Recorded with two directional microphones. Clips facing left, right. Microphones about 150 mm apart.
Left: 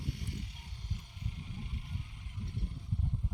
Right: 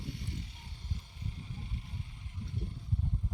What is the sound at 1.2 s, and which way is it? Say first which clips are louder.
Vehicle: left 1 dB; 35° right (ahead or behind).